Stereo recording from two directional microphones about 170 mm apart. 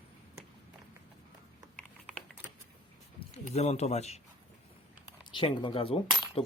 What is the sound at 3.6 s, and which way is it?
Speech, 40° left (ahead or behind).